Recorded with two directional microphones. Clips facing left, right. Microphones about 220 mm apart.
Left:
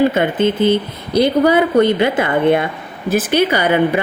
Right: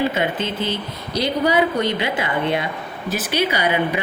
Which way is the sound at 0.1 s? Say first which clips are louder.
Left 7 dB; 50° left (ahead or behind).